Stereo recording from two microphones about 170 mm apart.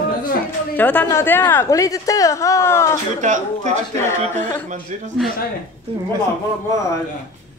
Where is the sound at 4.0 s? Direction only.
15° left (ahead or behind).